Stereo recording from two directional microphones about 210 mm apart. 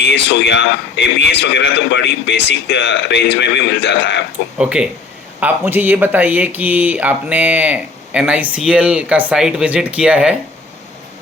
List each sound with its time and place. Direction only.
0.0 s a man's voice: 55° left (ahead or behind)
4.5 s speech: 5° right (ahead or behind)